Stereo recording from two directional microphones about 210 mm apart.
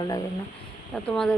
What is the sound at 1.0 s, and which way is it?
Speech, 5° left (ahead or behind).